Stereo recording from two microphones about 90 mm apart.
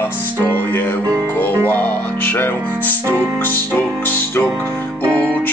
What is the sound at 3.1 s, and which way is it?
Music, 25° right (ahead or behind).